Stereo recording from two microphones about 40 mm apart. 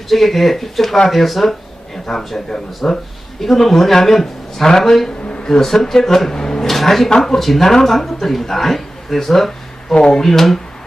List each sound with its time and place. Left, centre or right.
0.1 s speech: centre
9.9 s speech: left
10.2 s speech: centre